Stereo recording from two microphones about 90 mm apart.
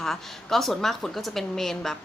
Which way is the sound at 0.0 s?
5° left (ahead or behind).